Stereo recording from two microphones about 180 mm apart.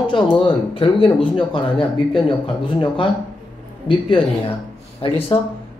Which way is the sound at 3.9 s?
30° left (ahead or behind).